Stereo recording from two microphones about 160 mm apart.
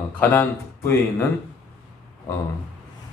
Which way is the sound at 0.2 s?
10° left (ahead or behind).